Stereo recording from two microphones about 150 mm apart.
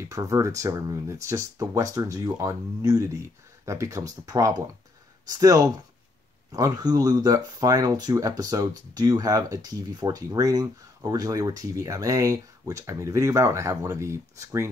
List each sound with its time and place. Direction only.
0.1 s speech: 20° right (ahead or behind)